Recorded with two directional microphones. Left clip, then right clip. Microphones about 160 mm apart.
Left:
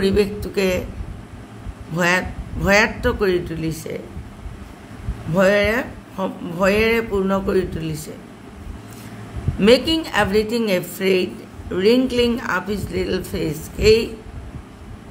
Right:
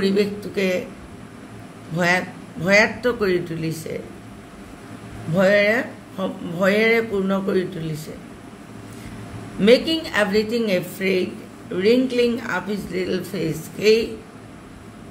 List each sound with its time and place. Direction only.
0.0 s speech: 20° left (ahead or behind)
2.0 s speech: 20° left (ahead or behind)
5.3 s speech: 20° left (ahead or behind)
9.6 s speech: 20° left (ahead or behind)